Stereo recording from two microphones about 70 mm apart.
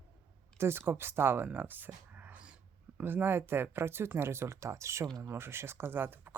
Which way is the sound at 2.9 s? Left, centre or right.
Right.